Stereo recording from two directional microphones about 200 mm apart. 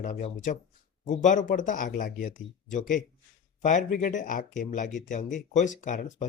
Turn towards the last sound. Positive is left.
turn(degrees=40)  # may be behind; listen again after turning